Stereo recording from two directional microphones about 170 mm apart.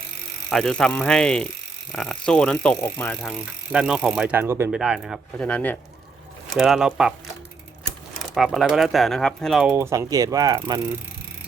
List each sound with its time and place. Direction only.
0.5 s speech: 5° left (ahead or behind)
3.7 s speech: 5° right (ahead or behind)
4.7 s speech: 5° right (ahead or behind)
5.4 s speech: 10° left (ahead or behind)
6.5 s speech: centre (ahead or behind)
8.4 s speech: centre (ahead or behind)
9.7 s speech: 15° right (ahead or behind)